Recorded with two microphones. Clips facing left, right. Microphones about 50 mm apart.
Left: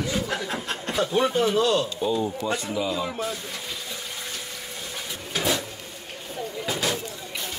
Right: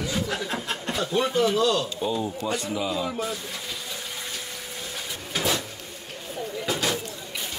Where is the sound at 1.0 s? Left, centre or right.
Left.